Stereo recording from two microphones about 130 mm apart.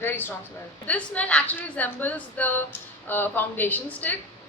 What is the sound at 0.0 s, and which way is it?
A woman's voice, 15° left (ahead or behind).